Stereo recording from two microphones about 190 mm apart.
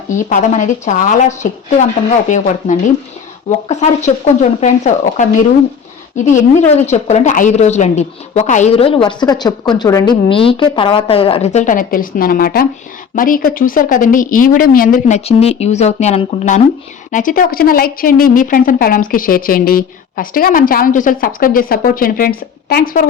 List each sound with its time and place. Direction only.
0.3 s a woman's voice: 40° left (ahead or behind)
6.3 s a woman's voice: 35° left (ahead or behind)